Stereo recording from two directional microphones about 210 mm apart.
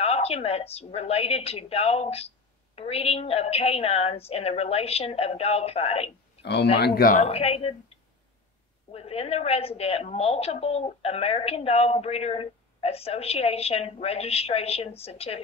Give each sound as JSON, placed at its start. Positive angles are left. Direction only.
{"t": 0.0, "sound": "a woman's voice", "side_deg": 30}
{"t": 6.4, "sound": "speech", "side_deg": 55}
{"t": 7.2, "sound": "a woman's voice", "side_deg": 30}
{"t": 8.9, "sound": "a woman's voice", "side_deg": 30}